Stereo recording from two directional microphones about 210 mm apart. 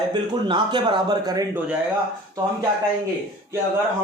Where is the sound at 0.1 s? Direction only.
20° right (ahead or behind).